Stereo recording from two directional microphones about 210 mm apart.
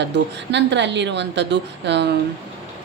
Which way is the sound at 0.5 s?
55° right (ahead or behind).